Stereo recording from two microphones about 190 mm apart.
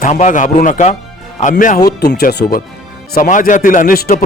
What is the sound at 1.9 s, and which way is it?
Speech, 55° left (ahead or behind).